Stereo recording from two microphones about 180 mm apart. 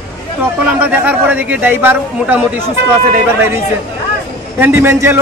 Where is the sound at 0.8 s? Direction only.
10° right (ahead or behind).